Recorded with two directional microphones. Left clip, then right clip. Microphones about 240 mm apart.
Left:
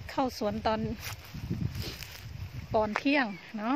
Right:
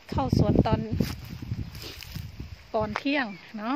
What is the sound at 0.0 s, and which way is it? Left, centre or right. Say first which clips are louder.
Speech: right 3 dB; centre.